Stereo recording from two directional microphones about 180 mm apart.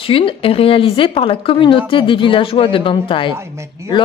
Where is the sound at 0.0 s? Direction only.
30° left (ahead or behind).